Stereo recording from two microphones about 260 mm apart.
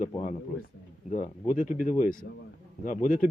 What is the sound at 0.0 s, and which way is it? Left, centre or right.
A man's voice, left.